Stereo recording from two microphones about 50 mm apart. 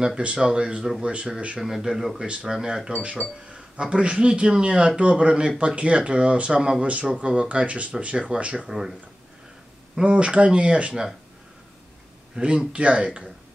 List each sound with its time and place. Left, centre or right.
0.2 s speech: centre
1.6 s speech: centre
3.4 s a sound: right
3.8 s speech: right
8.6 s speech: centre
10.0 s speech: right
12.4 s speech: right